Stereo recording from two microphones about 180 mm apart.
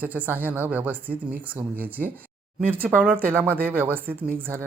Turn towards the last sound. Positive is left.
turn(degrees=-10)  # may be behind; listen again after turning